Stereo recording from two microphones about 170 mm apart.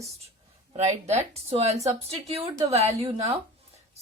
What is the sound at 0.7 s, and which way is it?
A woman's voice, 40° right (ahead or behind).